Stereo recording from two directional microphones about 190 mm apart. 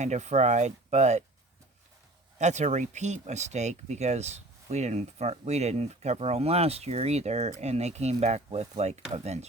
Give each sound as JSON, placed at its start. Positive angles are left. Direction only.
{"t": 0.0, "sound": "speech", "side_deg": -35}
{"t": 2.4, "sound": "speech", "side_deg": -40}